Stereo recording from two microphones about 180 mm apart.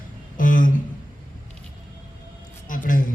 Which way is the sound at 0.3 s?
50° left (ahead or behind).